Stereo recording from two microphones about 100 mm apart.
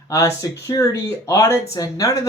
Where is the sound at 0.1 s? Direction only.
35° left (ahead or behind).